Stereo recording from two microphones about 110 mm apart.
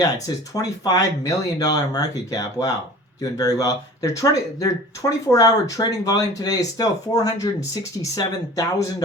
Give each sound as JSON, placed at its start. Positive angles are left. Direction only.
{"t": 0.5, "sound": "speech", "side_deg": 35}